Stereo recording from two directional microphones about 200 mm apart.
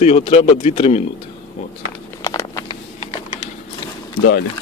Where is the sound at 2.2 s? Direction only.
20° left (ahead or behind).